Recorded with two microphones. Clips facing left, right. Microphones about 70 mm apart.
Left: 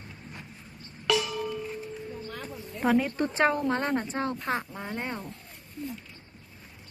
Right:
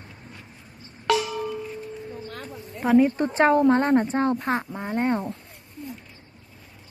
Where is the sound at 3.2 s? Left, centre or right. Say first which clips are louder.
Right 6 dB; right.